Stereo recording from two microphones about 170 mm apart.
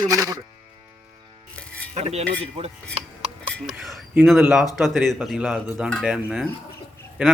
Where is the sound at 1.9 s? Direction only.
40° right (ahead or behind).